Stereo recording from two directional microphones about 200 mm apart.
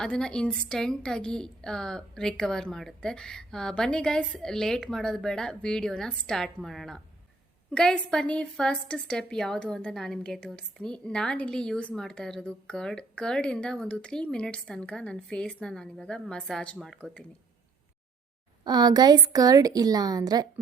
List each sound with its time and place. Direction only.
0.0 s a woman's voice: 5° left (ahead or behind)
18.6 s a woman's voice: 20° right (ahead or behind)